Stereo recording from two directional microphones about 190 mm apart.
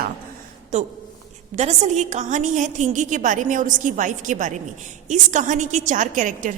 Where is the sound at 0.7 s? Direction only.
35° right (ahead or behind).